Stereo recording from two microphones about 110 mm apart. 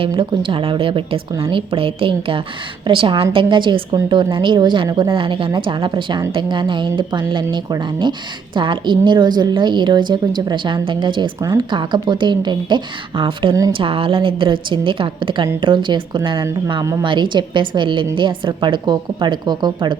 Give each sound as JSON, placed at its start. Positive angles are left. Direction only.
{"t": 0.1, "sound": "a woman's voice", "side_deg": -45}
{"t": 4.9, "sound": "speech", "side_deg": -30}
{"t": 5.1, "sound": "a woman's voice", "side_deg": -50}
{"t": 13.5, "sound": "speech", "side_deg": -30}
{"t": 13.7, "sound": "a woman's voice", "side_deg": -55}